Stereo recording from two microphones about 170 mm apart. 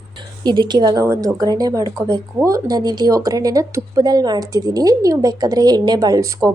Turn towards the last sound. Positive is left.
turn(degrees=-20)  # may be behind; listen again after turning